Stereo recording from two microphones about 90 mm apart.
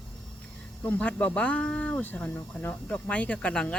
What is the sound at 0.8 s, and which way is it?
Speech, 15° left (ahead or behind).